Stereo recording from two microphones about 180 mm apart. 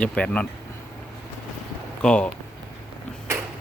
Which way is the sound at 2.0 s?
5° left (ahead or behind).